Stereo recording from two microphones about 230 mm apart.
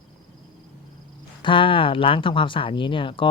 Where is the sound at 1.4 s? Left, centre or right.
Left.